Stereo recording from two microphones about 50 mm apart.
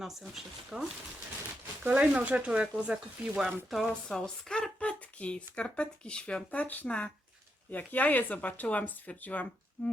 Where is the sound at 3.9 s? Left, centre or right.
Centre.